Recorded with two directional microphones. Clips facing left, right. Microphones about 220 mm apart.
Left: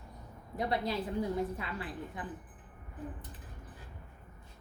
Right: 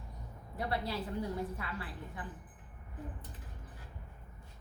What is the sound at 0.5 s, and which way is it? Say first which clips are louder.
A woman's voice: left 4 dB; 15° left (ahead or behind).